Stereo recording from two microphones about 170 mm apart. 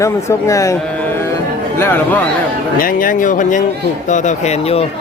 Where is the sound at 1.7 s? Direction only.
15° left (ahead or behind).